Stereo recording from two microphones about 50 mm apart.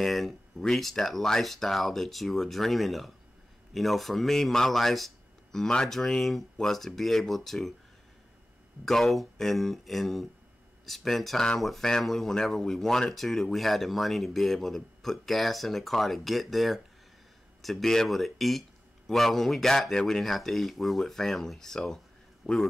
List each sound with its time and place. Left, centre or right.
0.0 s speech: centre
8.8 s speech: centre
22.4 s a man's voice: centre